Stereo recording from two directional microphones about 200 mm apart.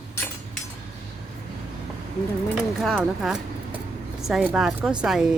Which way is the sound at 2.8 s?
Centre (ahead or behind).